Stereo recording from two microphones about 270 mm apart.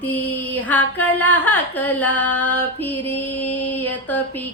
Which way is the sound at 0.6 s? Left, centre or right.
Centre.